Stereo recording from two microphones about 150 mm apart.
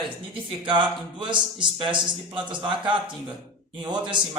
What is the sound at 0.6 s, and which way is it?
Speech, 35° right (ahead or behind).